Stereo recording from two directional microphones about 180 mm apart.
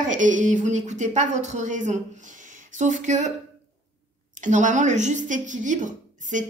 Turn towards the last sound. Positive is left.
turn(degrees=-45)  # may be behind; listen again after turning